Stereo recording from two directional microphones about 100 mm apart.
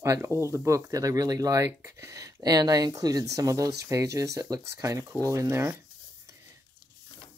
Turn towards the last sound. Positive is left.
turn(degrees=-25)  # may be behind; listen again after turning